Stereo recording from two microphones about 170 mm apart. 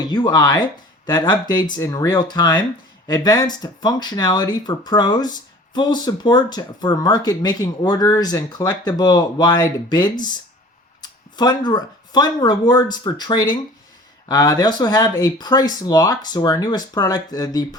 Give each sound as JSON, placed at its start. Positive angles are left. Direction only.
{"t": 0.1, "sound": "speech", "side_deg": 25}